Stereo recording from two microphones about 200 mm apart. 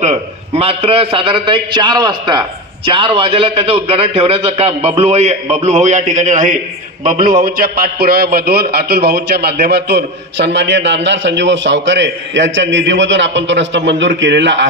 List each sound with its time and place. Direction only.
0.0 s a man's voice: 30° right (ahead or behind); by 14.7 s 65° right (ahead or behind)